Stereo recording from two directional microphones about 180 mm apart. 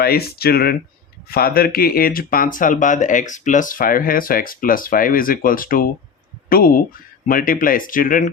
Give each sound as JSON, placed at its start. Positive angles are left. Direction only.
{"t": 0.0, "sound": "speech", "side_deg": 60}